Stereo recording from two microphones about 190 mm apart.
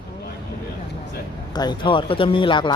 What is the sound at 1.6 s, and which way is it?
Speech, 25° left (ahead or behind).